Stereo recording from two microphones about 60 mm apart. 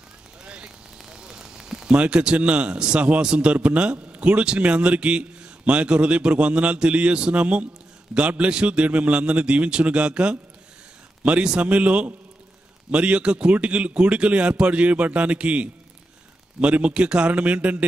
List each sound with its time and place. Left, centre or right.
0.4 s vehicle: centre
1.0 s a sound: centre
2.0 s a man's voice: centre